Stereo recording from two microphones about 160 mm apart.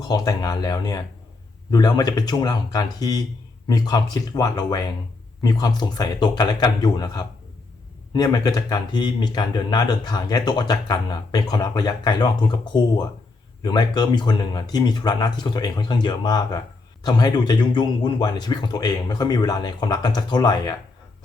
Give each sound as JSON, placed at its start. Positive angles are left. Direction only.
{"t": 0.0, "sound": "speech", "side_deg": 25}